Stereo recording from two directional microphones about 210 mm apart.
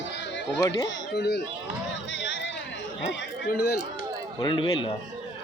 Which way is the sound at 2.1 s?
60° left (ahead or behind).